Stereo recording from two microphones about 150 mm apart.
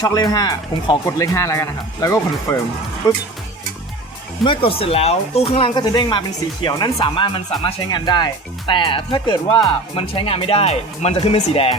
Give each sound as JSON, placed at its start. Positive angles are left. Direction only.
{"t": 0.0, "sound": "speech", "side_deg": 25}
{"t": 4.4, "sound": "speech", "side_deg": 35}
{"t": 9.9, "sound": "speech", "side_deg": 40}